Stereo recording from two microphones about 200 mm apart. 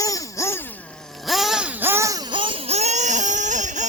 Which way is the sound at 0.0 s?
15° left (ahead or behind).